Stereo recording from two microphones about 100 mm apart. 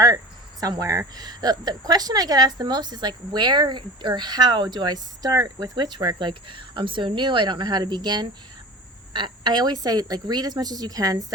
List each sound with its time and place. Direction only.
0.6 s speech: 35° right (ahead or behind)